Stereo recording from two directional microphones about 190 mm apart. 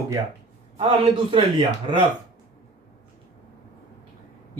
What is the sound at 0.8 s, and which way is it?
Speech, 25° right (ahead or behind).